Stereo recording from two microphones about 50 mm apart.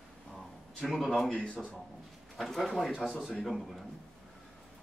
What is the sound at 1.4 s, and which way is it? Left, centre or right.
Speech, centre.